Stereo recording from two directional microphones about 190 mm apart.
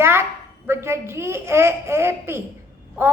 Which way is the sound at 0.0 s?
15° right (ahead or behind).